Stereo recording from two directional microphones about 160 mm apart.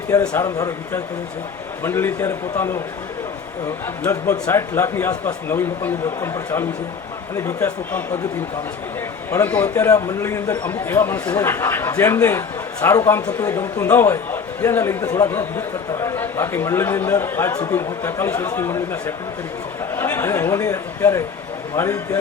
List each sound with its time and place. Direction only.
0.1 s a man's voice: 20° left (ahead or behind)
4.1 s a man's voice: 15° left (ahead or behind)
9.3 s a man's voice: 15° left (ahead or behind)